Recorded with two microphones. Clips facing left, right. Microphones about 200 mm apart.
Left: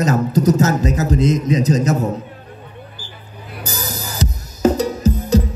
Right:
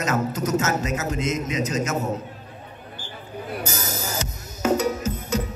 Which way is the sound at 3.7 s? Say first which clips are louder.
Left 1 dB; 35° left (ahead or behind).